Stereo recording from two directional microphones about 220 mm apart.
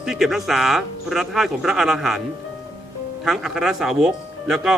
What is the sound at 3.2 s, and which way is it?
Speech, centre (ahead or behind).